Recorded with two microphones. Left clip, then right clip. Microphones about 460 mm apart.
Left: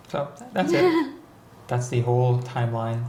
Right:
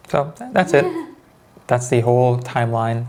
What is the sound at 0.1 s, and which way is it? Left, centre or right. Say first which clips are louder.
Speech: right 10 dB; right.